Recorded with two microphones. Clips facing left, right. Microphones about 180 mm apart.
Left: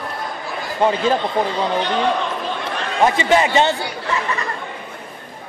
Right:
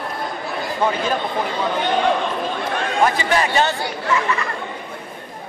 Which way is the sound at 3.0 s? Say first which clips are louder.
Left 4 dB; 25° left (ahead or behind).